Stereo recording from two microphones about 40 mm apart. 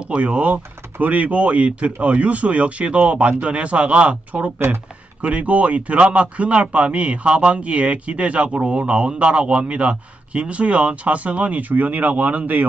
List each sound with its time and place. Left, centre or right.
0.1 s speech: right